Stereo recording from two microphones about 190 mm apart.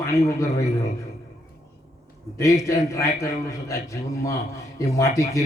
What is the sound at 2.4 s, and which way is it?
A man's voice, 15° left (ahead or behind).